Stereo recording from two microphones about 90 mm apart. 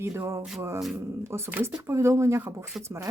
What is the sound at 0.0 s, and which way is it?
Speech, 25° right (ahead or behind).